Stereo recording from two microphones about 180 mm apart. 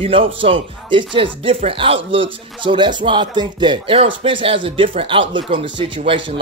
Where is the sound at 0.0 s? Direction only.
30° right (ahead or behind).